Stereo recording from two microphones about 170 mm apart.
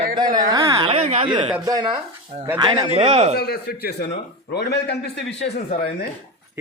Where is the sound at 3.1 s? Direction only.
40° right (ahead or behind).